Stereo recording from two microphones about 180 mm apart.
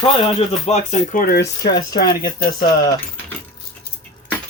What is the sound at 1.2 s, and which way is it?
Speech, 65° left (ahead or behind).